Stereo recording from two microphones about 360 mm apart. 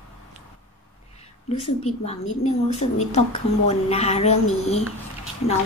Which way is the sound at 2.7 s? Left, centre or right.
Centre.